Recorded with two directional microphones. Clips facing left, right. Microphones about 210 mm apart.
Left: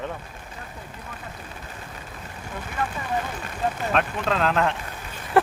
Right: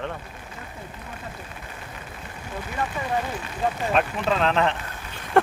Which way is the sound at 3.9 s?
Centre (ahead or behind).